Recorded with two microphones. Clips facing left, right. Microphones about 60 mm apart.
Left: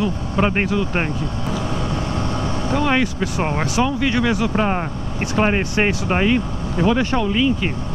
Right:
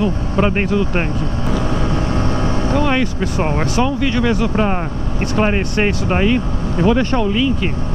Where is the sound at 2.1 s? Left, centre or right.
Right.